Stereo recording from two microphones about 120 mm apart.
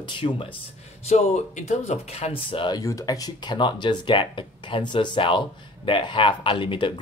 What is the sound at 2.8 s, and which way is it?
Speech, 30° left (ahead or behind).